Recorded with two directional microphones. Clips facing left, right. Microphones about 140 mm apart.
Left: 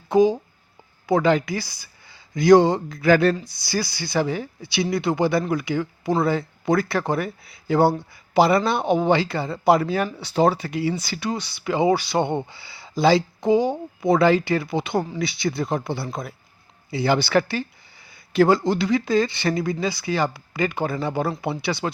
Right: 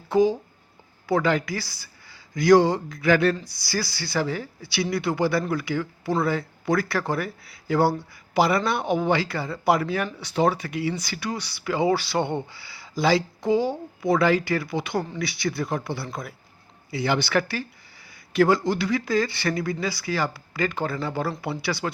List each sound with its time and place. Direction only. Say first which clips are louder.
0.1 s speech: left 3 dB; 15° left (ahead or behind); by 3.3 s 35° left (ahead or behind)
3.4 s speech: left 3 dB; 20° left (ahead or behind)